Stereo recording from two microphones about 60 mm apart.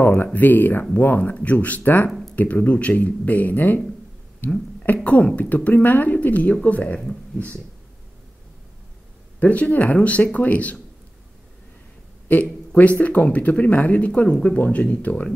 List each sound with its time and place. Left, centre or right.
0.0 s speech: left
2.0 s a sound: centre
2.3 s speech: left
9.4 s speech: left
12.3 s speech: left